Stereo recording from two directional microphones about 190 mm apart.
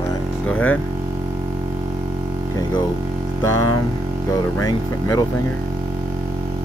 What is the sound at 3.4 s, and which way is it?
Speech, 15° left (ahead or behind).